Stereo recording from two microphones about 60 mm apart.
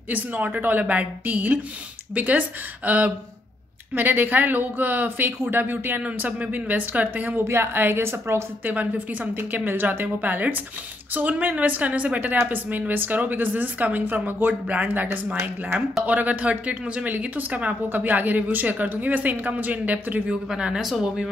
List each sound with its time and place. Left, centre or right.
0.1 s a woman's voice: right
7.4 s a woman's voice: right
8.6 s a woman's voice: right
20.4 s speech: centre